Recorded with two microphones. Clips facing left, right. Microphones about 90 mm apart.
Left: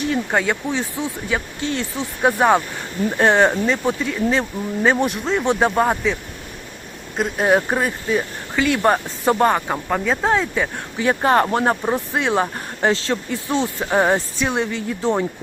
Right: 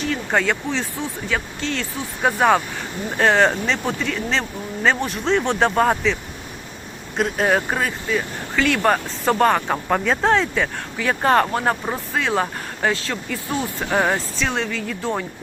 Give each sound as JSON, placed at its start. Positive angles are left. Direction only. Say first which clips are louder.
{"t": 0.3, "sound": "speech", "louder": "even", "side_deg": 10}
{"t": 7.2, "sound": "speech", "louder": "even", "side_deg": 5}
{"t": 7.5, "sound": "speech", "louder": "left 3 dB", "side_deg": 15}
{"t": 9.3, "sound": "speech", "louder": "even", "side_deg": 10}